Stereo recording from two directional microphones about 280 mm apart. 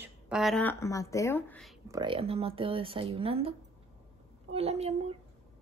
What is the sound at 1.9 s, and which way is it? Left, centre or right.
Speech, centre.